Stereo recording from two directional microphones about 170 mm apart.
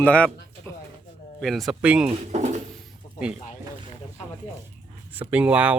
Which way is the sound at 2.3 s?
45° right (ahead or behind).